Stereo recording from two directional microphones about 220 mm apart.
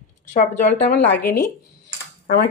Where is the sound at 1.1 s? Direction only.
10° left (ahead or behind).